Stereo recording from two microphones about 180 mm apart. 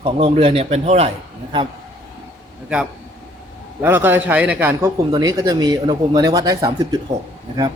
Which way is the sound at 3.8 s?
10° right (ahead or behind).